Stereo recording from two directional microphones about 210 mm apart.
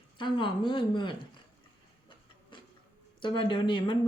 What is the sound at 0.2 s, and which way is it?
Speech, 25° left (ahead or behind).